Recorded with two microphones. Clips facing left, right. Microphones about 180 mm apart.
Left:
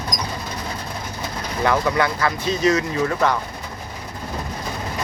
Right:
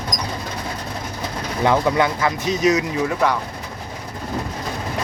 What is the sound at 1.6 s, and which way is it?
Speech, 20° right (ahead or behind).